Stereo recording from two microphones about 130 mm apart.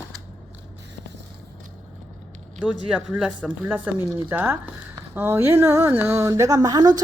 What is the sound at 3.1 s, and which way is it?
Speech, 10° right (ahead or behind).